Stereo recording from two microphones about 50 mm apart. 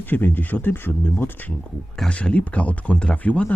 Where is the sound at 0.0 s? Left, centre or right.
Left.